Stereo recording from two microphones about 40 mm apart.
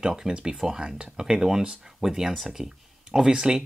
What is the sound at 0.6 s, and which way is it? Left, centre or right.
Speech, centre.